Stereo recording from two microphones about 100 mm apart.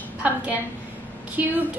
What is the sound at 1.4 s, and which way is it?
Speech, 15° right (ahead or behind).